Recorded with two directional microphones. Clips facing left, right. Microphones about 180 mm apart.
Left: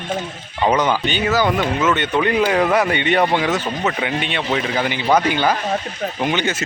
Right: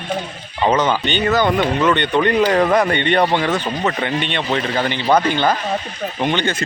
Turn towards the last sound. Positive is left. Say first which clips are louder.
# right 1 dB
turn(degrees=5)  # may be behind; listen again after turning